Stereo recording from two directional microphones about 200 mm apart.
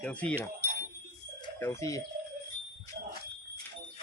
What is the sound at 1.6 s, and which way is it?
Speech, 15° left (ahead or behind).